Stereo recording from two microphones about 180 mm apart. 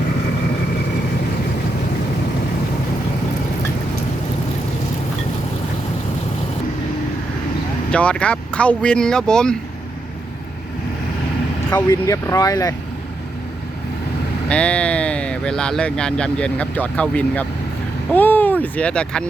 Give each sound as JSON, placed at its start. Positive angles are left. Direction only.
{"t": 7.9, "sound": "speech", "side_deg": 5}
{"t": 11.7, "sound": "speech", "side_deg": 15}
{"t": 14.5, "sound": "speech", "side_deg": 5}